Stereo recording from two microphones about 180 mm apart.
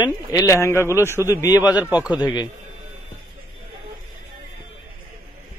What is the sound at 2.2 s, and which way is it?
Speech, 20° left (ahead or behind).